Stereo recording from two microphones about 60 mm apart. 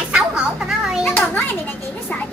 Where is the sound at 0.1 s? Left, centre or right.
Centre.